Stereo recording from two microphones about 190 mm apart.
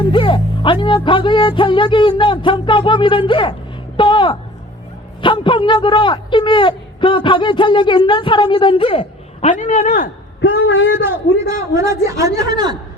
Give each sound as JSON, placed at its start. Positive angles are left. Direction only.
{"t": 0.0, "sound": "a man's voice", "side_deg": 25}
{"t": 11.0, "sound": "a man's voice", "side_deg": -15}